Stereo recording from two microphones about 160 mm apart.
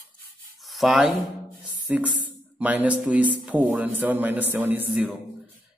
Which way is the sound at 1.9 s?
10° right (ahead or behind).